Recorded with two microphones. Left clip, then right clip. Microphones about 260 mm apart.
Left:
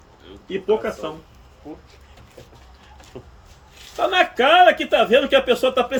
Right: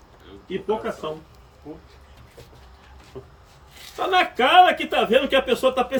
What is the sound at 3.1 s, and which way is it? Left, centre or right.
Speech, left.